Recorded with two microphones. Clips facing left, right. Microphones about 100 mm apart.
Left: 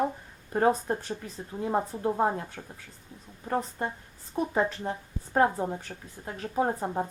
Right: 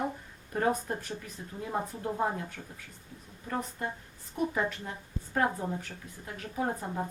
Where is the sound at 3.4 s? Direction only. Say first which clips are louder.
Left 5 dB; 35° left (ahead or behind).